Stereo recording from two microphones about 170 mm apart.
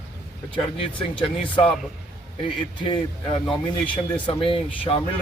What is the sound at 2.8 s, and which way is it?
Speech, 30° left (ahead or behind).